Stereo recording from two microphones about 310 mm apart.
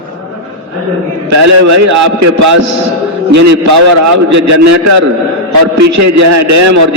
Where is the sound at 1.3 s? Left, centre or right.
Right.